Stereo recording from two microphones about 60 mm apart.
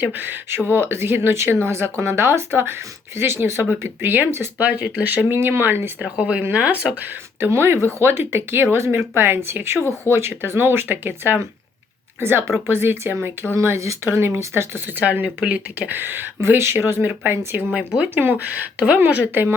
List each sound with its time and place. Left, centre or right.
0.0 s speech: right
4.5 s speech: right
5.3 s speech: right
6.0 s speech: centre
7.3 s speech: right
13.6 s speech: right
14.9 s speech: right
16.0 s speech: right
17.7 s speech: centre
18.1 s speech: right